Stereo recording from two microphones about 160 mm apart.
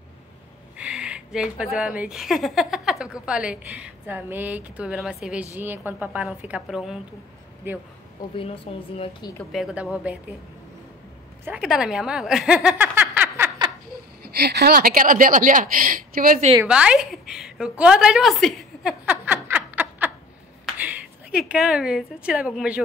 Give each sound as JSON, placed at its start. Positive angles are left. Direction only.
{"t": 0.7, "sound": "a woman's voice", "side_deg": -5}
{"t": 8.4, "sound": "a woman's voice", "side_deg": 35}
{"t": 9.4, "sound": "a woman's voice", "side_deg": 0}
{"t": 11.4, "sound": "speech", "side_deg": -5}
{"t": 14.3, "sound": "a woman's voice", "side_deg": -90}
{"t": 16.6, "sound": "a woman's voice", "side_deg": -5}
{"t": 19.0, "sound": "a sound", "side_deg": -10}
{"t": 20.7, "sound": "a woman's voice", "side_deg": -10}